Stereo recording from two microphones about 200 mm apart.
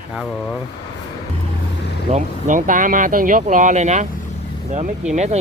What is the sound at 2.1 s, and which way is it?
Speech, 40° right (ahead or behind).